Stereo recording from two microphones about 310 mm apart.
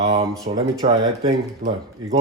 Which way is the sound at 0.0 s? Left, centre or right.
Centre.